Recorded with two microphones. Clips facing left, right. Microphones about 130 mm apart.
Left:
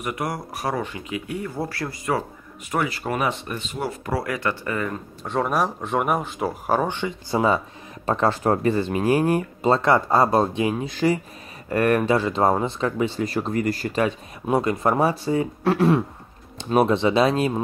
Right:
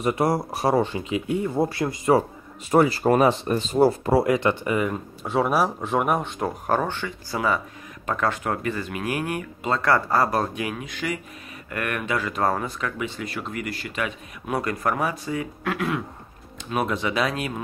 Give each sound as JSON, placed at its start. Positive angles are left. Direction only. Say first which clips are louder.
{"t": 0.0, "sound": "speech", "louder": "right 6 dB", "side_deg": -30}
{"t": 6.9, "sound": "speech", "louder": "left 5 dB", "side_deg": 20}
{"t": 9.8, "sound": "speech", "louder": "even", "side_deg": 20}